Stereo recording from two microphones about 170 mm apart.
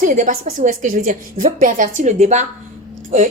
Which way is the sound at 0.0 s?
50° right (ahead or behind).